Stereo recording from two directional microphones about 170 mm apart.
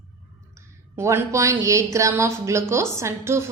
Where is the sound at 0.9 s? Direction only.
15° right (ahead or behind).